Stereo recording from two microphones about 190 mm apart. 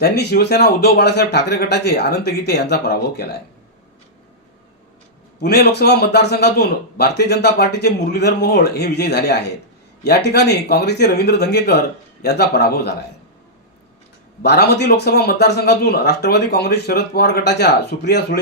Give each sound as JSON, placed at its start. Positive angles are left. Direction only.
{"t": 0.0, "sound": "a man's voice", "side_deg": 60}
{"t": 5.4, "sound": "a man's voice", "side_deg": 60}
{"t": 14.4, "sound": "a man's voice", "side_deg": 60}